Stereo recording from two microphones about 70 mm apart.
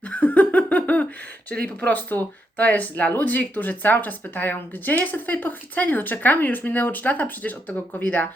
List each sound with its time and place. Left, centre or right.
0.1 s giggle: left
1.5 s speech: left